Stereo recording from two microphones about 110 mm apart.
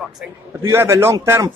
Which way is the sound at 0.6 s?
25° right (ahead or behind).